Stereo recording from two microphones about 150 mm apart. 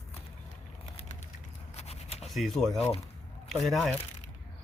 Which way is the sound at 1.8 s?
45° left (ahead or behind).